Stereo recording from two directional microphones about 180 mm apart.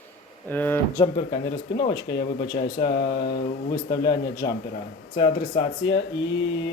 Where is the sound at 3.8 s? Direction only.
20° left (ahead or behind).